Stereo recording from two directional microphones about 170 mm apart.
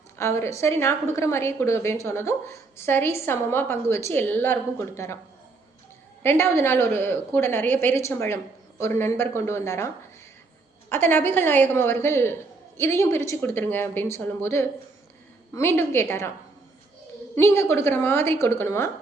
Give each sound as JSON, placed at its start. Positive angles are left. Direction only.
{"t": 0.2, "sound": "a woman's voice", "side_deg": 15}
{"t": 6.2, "sound": "a woman's voice", "side_deg": 15}
{"t": 17.3, "sound": "a woman's voice", "side_deg": 15}